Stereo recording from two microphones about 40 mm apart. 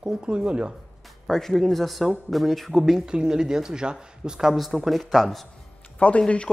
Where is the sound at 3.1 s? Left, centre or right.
Centre.